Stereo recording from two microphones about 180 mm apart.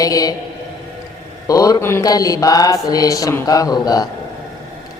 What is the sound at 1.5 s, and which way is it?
Mantra, 20° left (ahead or behind).